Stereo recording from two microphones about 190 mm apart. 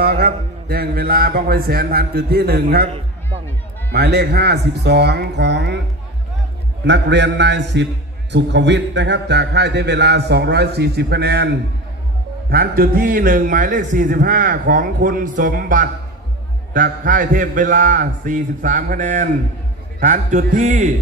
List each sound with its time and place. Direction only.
0.0 s a man's voice: 55° right (ahead or behind)
3.9 s a man's voice: 60° right (ahead or behind)
6.8 s a man's voice: 65° right (ahead or behind); by 20.9 s 40° right (ahead or behind)